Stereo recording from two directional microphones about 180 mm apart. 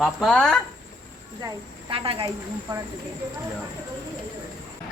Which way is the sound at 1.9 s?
30° right (ahead or behind).